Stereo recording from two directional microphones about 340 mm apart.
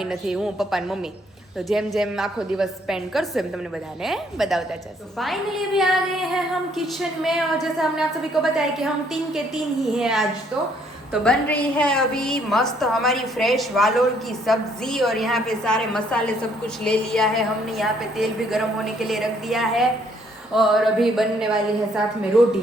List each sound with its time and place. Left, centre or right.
0.1 s a woman's voice: centre
10.0 s a woman's voice: centre